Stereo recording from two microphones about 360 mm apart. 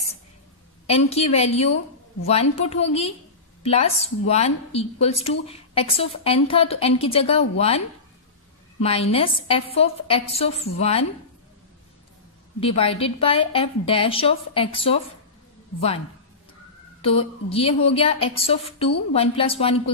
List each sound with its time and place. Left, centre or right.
0.8 s a woman's voice: centre
8.8 s a woman's voice: centre
12.5 s a woman's voice: centre
17.0 s a woman's voice: centre